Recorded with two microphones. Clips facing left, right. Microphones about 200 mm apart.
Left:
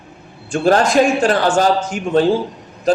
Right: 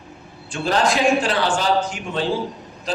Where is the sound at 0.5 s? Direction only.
45° left (ahead or behind).